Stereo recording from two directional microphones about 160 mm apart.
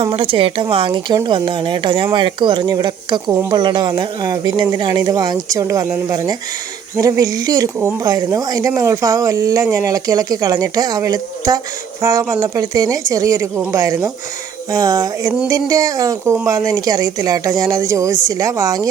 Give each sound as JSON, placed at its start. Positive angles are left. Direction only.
{"t": 0.0, "sound": "a woman's voice", "side_deg": -35}
{"t": 3.6, "sound": "speech", "side_deg": -30}